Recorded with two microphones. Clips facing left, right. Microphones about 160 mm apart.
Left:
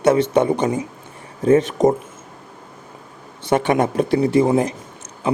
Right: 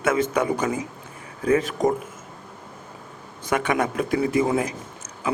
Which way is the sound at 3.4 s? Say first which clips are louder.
Left 5 dB; 30° left (ahead or behind).